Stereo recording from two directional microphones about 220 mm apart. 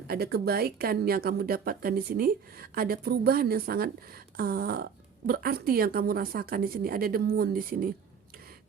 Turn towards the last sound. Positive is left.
turn(degrees=-40)  # may be behind; listen again after turning